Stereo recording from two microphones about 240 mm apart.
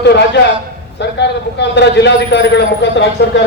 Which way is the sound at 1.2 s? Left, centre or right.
Left.